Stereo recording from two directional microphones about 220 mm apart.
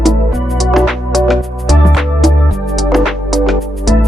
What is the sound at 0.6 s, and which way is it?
Music, centre (ahead or behind).